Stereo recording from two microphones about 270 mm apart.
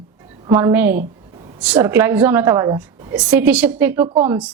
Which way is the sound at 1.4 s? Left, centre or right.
Right.